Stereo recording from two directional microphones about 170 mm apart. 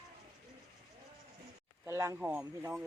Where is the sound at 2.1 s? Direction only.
5° right (ahead or behind).